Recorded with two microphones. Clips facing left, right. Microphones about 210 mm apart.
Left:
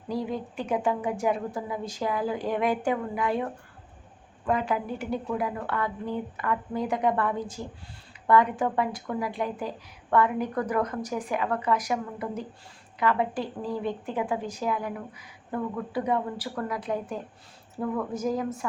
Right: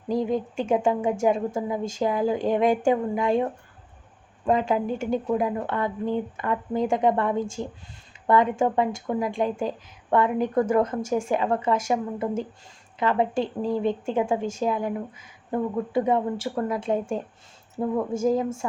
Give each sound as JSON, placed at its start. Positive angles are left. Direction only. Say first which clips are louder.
{"t": 0.1, "sound": "speech", "louder": "right 6 dB", "side_deg": -20}
{"t": 4.7, "sound": "speech", "louder": "right 5 dB", "side_deg": -25}